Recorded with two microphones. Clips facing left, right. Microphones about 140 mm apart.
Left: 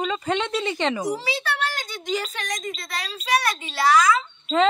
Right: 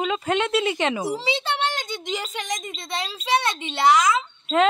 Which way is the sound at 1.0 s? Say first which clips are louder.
Right 1 dB; 25° right (ahead or behind).